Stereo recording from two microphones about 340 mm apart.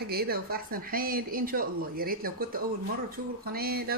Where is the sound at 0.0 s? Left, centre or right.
Right.